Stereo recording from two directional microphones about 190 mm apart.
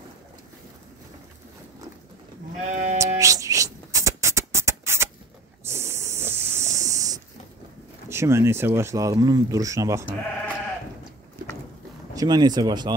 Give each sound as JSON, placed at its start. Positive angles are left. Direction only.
{"t": 2.5, "sound": "sheep", "side_deg": -40}
{"t": 3.0, "sound": "beatboxing", "side_deg": -15}
{"t": 5.7, "sound": "a sound", "side_deg": -15}
{"t": 8.1, "sound": "speech", "side_deg": -15}
{"t": 12.1, "sound": "speech", "side_deg": -20}